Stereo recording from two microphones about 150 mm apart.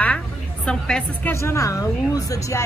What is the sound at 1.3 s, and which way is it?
A woman's voice, 20° left (ahead or behind).